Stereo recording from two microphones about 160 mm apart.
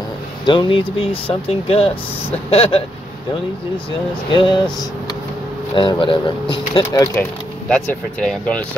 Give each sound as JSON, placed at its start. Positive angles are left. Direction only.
{"t": 0.5, "sound": "speech", "side_deg": 30}
{"t": 4.3, "sound": "speech", "side_deg": 30}
{"t": 5.8, "sound": "speech", "side_deg": 30}
{"t": 6.8, "sound": "speech", "side_deg": 20}
{"t": 7.6, "sound": "speech", "side_deg": 10}